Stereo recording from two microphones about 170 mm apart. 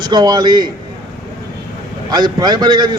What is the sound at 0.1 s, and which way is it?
Speech, 25° right (ahead or behind).